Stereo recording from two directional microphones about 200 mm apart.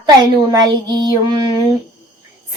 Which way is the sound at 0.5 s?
20° right (ahead or behind).